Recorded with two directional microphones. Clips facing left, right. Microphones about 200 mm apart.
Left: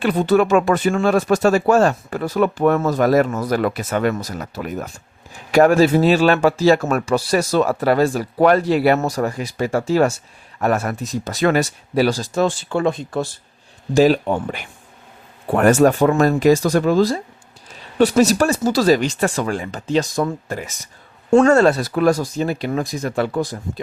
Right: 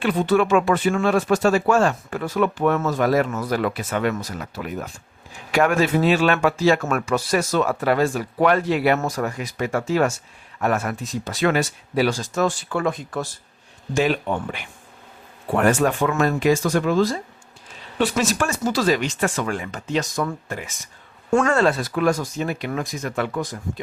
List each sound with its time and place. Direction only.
0.0 s speech: 40° left (ahead or behind)
21.5 s speech: 40° left (ahead or behind)